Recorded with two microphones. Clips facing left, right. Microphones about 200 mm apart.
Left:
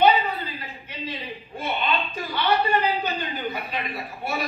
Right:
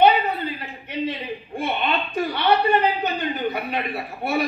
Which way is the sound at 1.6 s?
60° right (ahead or behind).